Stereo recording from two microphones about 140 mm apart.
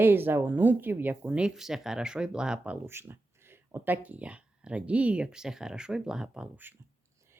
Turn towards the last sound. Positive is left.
turn(degrees=-10)  # may be behind; listen again after turning